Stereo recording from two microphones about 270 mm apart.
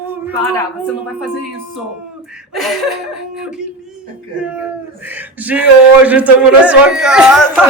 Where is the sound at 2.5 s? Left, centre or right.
Centre.